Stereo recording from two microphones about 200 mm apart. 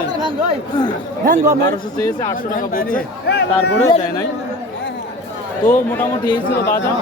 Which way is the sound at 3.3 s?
55° left (ahead or behind).